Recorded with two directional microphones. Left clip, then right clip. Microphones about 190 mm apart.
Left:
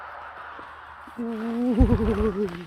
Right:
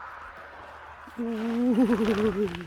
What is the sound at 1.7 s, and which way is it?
Speech, 10° right (ahead or behind).